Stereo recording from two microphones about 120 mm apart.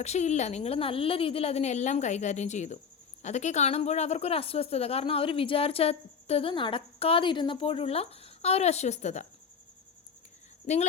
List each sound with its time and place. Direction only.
0.0 s a woman's voice: 70° left (ahead or behind)
10.7 s a woman's voice: 75° left (ahead or behind)